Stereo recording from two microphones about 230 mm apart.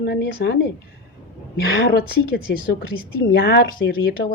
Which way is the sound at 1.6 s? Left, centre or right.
Left.